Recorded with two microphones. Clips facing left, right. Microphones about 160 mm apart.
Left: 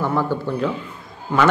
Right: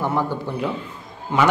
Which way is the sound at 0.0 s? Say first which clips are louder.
Left 2 dB; 15° right (ahead or behind).